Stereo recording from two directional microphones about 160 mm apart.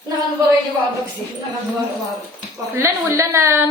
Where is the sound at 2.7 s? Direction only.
15° right (ahead or behind).